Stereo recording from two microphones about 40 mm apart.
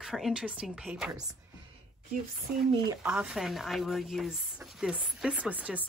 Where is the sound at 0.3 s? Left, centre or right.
Right.